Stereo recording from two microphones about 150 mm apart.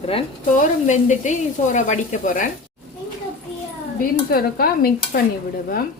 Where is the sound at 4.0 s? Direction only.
80° left.